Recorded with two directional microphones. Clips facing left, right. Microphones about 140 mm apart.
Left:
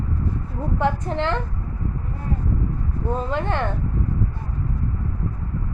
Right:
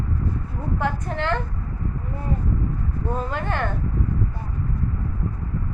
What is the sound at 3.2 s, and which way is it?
Speech, 25° left (ahead or behind).